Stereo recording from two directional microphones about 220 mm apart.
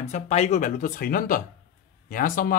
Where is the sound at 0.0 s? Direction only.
30° left (ahead or behind).